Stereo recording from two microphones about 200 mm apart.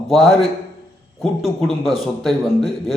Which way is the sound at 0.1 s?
Centre (ahead or behind).